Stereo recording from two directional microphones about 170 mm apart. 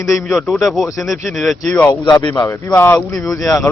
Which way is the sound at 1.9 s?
25° left (ahead or behind).